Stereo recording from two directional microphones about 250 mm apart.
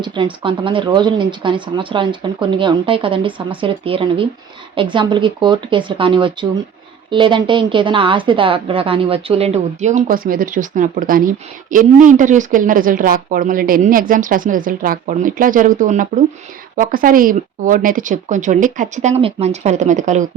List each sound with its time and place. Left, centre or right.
0.0 s a woman's voice: centre